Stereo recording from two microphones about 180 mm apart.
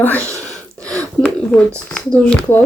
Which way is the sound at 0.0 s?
10° left (ahead or behind).